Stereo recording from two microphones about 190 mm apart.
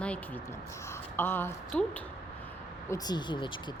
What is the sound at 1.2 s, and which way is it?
Speech, 10° left (ahead or behind).